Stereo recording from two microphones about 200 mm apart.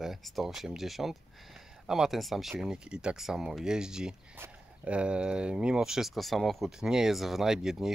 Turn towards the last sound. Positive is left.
turn(degrees=0)  # may be behind; listen again after turning